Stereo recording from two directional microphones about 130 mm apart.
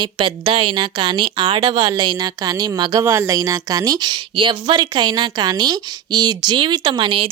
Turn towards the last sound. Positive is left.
turn(degrees=-40)  # may be behind; listen again after turning